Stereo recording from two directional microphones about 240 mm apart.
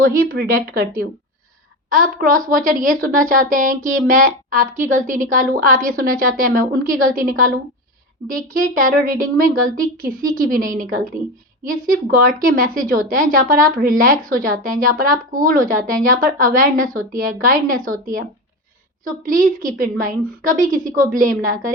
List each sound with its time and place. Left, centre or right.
0.0 s a woman's voice: right
8.7 s a woman's voice: right